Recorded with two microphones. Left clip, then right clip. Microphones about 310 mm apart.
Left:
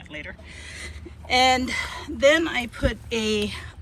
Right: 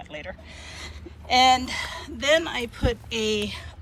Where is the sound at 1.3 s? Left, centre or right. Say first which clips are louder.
Right 1 dB; centre.